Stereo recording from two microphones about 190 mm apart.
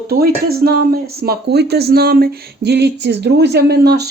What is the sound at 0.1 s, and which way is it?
Speech, 50° right (ahead or behind).